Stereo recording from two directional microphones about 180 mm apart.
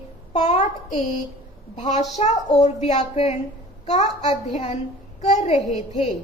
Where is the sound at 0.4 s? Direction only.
40° left (ahead or behind).